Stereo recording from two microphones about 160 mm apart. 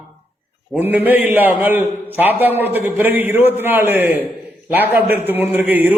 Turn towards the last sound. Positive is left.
turn(degrees=-10)  # may be behind; listen again after turning